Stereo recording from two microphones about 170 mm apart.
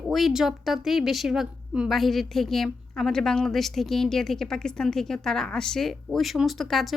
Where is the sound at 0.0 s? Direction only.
Centre (ahead or behind).